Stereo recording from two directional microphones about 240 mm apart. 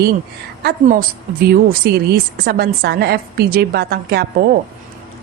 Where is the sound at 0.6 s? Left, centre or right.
Right.